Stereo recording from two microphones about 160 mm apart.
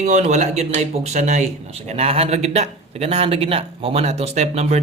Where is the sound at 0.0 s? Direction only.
45° right (ahead or behind).